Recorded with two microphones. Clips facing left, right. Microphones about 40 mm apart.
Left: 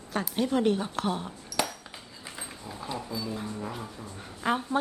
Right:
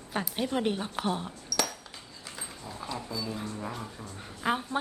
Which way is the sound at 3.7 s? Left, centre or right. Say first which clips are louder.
Left 1 dB; centre.